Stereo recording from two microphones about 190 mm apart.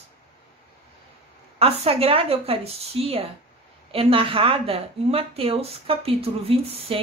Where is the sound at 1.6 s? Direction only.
30° right (ahead or behind).